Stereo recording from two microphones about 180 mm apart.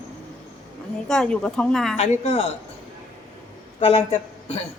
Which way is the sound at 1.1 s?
5° left (ahead or behind).